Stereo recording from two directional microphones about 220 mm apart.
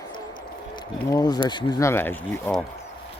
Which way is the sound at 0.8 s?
20° left (ahead or behind).